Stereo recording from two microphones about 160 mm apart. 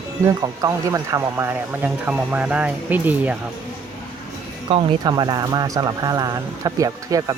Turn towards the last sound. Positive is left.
turn(degrees=-20)  # may be behind; listen again after turning